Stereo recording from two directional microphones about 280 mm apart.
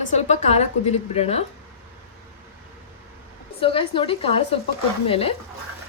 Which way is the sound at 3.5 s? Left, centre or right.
Centre.